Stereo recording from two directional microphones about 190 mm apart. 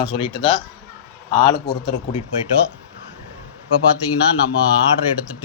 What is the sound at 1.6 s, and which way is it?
Speech, 20° left (ahead or behind).